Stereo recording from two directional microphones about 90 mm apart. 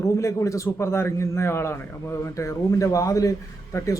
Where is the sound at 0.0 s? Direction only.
35° left (ahead or behind).